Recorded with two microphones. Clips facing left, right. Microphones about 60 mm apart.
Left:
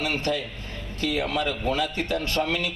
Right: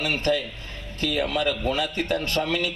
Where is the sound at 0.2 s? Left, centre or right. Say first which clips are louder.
Right 3 dB; right.